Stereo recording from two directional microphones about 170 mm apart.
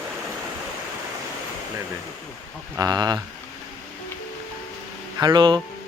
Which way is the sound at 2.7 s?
25° right (ahead or behind).